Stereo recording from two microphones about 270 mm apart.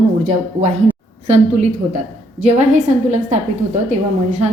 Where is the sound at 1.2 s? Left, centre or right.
Right.